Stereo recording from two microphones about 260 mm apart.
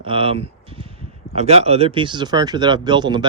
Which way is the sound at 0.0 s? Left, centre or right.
Right.